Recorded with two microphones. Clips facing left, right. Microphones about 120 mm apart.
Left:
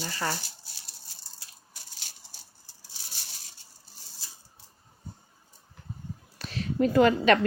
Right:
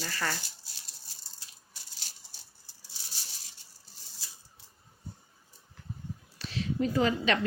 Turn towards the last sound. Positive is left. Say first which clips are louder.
# left 7 dB
turn(degrees=55)  # may be behind; listen again after turning